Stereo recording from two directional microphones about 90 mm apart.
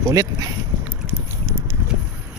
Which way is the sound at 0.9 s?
25° right (ahead or behind).